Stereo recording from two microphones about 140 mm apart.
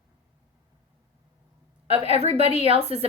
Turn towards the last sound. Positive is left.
turn(degrees=-45)  # may be behind; listen again after turning